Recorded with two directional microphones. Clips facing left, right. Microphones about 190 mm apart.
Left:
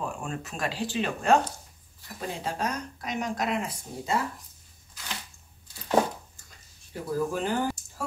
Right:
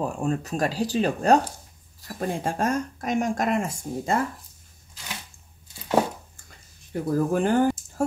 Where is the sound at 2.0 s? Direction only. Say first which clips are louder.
Right 6 dB; 50° right (ahead or behind).